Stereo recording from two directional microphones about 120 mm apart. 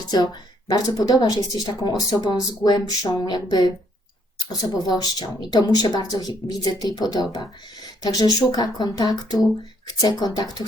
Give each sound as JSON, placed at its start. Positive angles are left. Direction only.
{"t": 0.1, "sound": "speech", "side_deg": 35}